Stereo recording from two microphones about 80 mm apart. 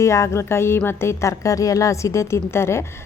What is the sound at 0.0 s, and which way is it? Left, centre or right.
A woman's voice, left.